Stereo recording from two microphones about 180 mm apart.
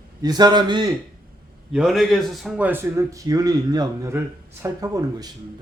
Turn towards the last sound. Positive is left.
turn(degrees=-20)  # may be behind; listen again after turning